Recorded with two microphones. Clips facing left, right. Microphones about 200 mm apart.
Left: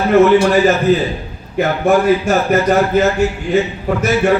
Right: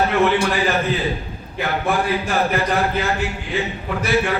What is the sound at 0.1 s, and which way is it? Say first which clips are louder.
A man's voice: left 8 dB; 40° left (ahead or behind).